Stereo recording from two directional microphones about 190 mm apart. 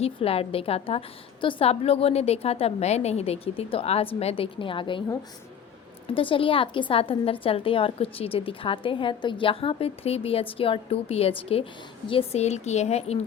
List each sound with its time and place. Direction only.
0.0 s a woman's voice: 30° left (ahead or behind)
6.1 s a woman's voice: 30° left (ahead or behind)